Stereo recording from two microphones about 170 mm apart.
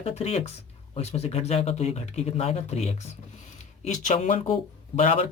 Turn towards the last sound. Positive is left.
turn(degrees=35)  # may be behind; listen again after turning